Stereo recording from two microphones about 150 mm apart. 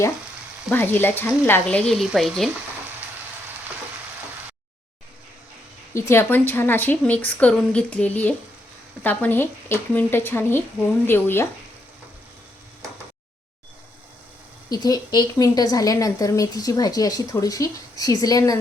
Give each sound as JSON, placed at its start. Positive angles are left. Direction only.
{"t": 0.7, "sound": "a woman's voice", "side_deg": 15}
{"t": 5.9, "sound": "a woman's voice", "side_deg": 15}
{"t": 14.7, "sound": "a woman's voice", "side_deg": 25}